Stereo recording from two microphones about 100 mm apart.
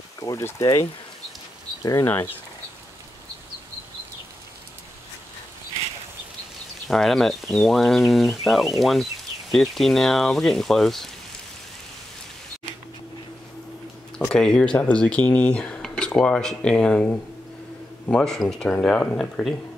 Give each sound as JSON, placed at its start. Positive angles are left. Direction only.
{"t": 0.2, "sound": "speech", "side_deg": 30}
{"t": 6.9, "sound": "speech", "side_deg": 5}
{"t": 14.3, "sound": "speech", "side_deg": 5}